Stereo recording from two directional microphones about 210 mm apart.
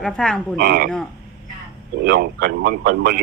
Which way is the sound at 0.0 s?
5° left (ahead or behind).